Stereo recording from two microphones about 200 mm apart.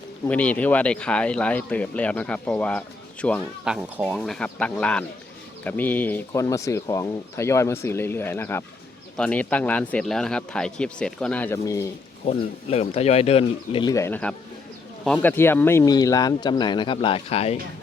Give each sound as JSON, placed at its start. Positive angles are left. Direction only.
{"t": 0.3, "sound": "speech", "side_deg": 5}
{"t": 3.7, "sound": "speech", "side_deg": -5}
{"t": 12.2, "sound": "speech", "side_deg": 35}
{"t": 13.9, "sound": "speech", "side_deg": 10}